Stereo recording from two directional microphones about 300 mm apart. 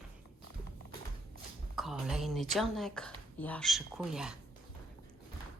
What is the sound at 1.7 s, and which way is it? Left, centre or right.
Speech, centre.